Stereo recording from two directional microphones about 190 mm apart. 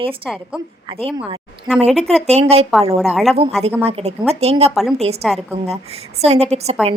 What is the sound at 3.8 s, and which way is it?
A woman's voice, 35° right (ahead or behind).